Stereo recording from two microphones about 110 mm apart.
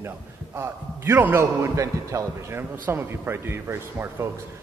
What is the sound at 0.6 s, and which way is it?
A man's voice, 25° right (ahead or behind).